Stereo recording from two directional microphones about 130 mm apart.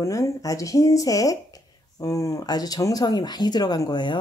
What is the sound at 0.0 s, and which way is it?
Speech, 25° left (ahead or behind).